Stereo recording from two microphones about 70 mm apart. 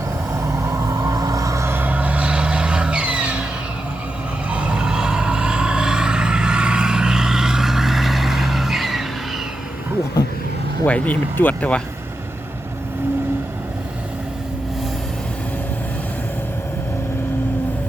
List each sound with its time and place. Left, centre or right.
0.3 s vehicle: right
1.7 s vehicle: right
4.4 s vehicle: centre
10.8 s speech: left